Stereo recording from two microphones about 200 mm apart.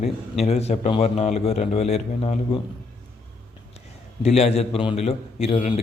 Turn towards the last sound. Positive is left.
turn(degrees=30)  # may be behind; listen again after turning